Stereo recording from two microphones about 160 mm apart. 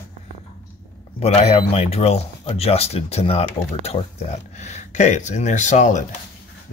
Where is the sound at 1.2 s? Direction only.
40° left (ahead or behind).